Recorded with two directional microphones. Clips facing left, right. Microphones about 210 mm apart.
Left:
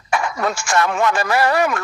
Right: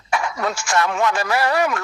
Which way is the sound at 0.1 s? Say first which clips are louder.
Left 2 dB; 50° left (ahead or behind).